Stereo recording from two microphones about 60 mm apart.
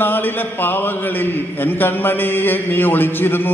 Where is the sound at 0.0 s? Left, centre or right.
Left.